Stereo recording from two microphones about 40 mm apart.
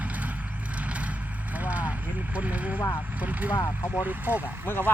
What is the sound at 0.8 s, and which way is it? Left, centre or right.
Vehicle, right.